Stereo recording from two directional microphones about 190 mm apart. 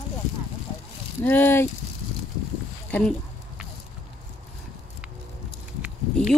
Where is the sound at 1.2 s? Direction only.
10° left (ahead or behind).